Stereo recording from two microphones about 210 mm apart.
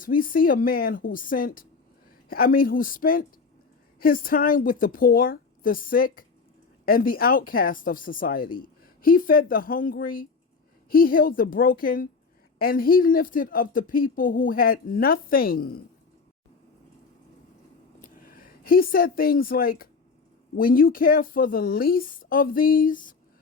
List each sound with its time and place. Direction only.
0.0 s a woman's voice: 40° left (ahead or behind)
18.0 s speech: 40° left (ahead or behind)